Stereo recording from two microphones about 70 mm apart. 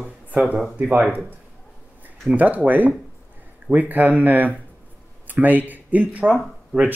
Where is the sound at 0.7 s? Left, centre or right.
Centre.